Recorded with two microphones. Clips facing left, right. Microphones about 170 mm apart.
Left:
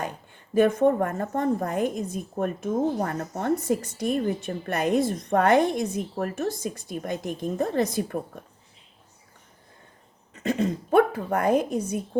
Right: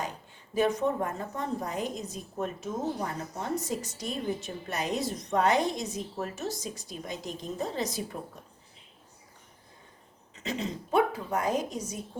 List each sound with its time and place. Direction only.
0.0 s a woman's voice: 55° left (ahead or behind)
10.3 s a woman's voice: 55° left (ahead or behind)